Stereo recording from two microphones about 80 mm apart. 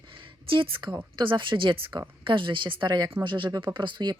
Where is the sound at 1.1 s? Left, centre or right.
Right.